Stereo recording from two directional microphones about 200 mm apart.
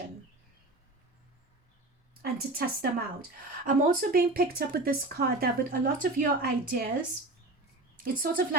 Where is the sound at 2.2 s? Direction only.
50° right (ahead or behind).